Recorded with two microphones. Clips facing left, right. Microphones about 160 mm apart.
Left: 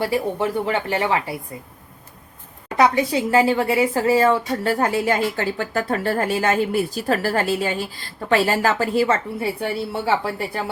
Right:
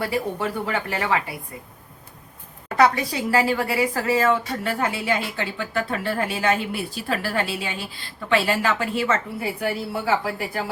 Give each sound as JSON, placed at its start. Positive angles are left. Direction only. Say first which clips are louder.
{"t": 0.0, "sound": "speech", "louder": "left 4 dB", "side_deg": 30}
{"t": 2.7, "sound": "speech", "louder": "left 2 dB", "side_deg": 25}